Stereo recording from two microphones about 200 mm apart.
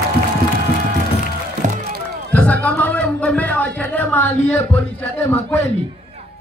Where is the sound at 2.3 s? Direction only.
5° left (ahead or behind).